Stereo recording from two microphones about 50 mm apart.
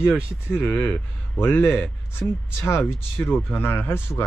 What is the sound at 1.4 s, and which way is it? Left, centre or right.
Speech, left.